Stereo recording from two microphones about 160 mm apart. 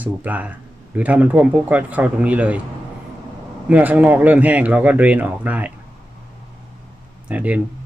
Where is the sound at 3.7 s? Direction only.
10° right (ahead or behind).